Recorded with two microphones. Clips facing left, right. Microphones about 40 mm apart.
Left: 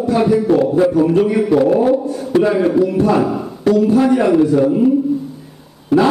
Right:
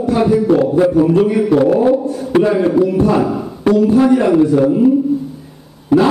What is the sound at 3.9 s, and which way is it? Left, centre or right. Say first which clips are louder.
Speech: right 1 dB; centre.